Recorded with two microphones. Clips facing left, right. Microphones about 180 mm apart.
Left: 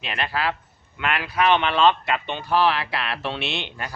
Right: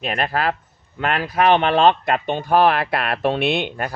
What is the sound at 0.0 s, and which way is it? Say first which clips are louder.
Speech: right 5 dB; 45° right (ahead or behind).